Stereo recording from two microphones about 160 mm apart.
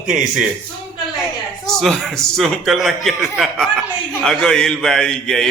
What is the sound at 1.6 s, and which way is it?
Speech, centre (ahead or behind).